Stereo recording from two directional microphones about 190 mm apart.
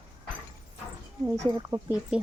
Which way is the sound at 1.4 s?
15° right (ahead or behind).